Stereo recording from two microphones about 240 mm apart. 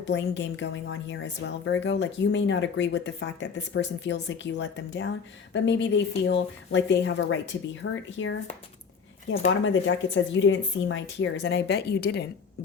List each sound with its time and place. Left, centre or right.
0.0 s a woman's voice: left
9.5 s a woman's voice: left